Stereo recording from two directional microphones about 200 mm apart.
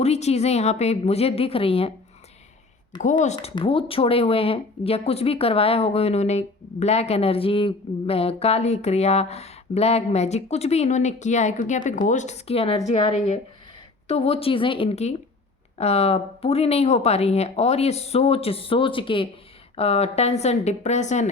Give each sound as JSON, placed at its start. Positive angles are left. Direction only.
{"t": 0.0, "sound": "speech", "side_deg": 35}
{"t": 3.0, "sound": "a woman's voice", "side_deg": 40}